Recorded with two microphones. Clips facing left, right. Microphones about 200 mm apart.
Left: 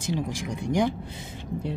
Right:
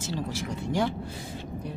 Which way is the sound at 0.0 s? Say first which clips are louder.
Left 3 dB; 15° left (ahead or behind).